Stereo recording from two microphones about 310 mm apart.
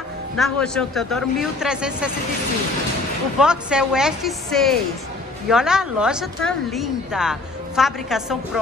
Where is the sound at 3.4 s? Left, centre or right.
Centre.